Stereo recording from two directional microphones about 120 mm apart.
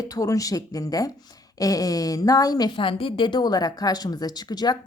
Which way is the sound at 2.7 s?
45° left (ahead or behind).